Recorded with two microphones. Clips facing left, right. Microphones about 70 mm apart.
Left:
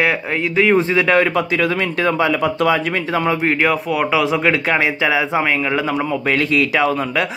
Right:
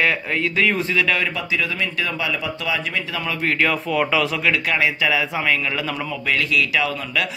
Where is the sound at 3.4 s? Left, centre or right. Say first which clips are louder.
Left 4 dB; centre.